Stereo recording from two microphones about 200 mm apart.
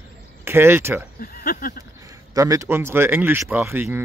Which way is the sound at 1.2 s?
45° left (ahead or behind).